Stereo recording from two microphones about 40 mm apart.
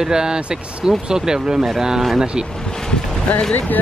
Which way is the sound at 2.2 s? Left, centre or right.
Centre.